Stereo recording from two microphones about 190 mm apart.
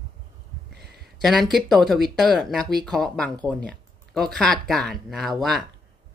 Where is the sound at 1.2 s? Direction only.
Centre (ahead or behind).